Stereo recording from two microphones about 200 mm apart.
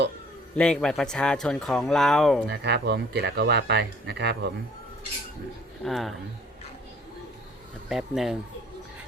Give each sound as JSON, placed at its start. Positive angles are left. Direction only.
{"t": 0.5, "sound": "speech", "side_deg": 5}
{"t": 2.5, "sound": "speech", "side_deg": -60}
{"t": 5.8, "sound": "speech", "side_deg": 0}
{"t": 7.9, "sound": "speech", "side_deg": 0}